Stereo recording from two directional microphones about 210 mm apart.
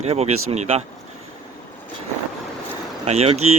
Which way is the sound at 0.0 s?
30° right (ahead or behind).